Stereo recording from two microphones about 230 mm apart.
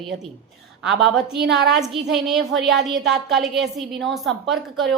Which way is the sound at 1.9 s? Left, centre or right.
Centre.